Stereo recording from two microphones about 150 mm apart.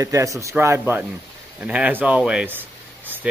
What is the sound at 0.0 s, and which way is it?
Speech, 20° right (ahead or behind).